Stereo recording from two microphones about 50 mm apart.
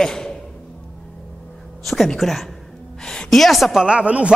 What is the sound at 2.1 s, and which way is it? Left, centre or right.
A woman's voice, centre.